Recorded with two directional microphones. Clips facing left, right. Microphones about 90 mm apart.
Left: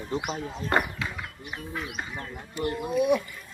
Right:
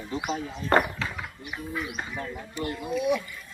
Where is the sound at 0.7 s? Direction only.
40° right (ahead or behind).